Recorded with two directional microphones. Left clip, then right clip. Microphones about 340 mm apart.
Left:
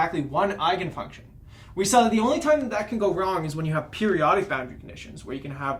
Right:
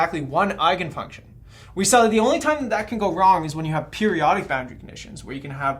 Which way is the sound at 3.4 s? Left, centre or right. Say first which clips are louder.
Right 2 dB; right.